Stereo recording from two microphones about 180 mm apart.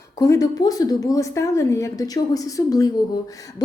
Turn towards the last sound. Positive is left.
turn(degrees=20)  # may be behind; listen again after turning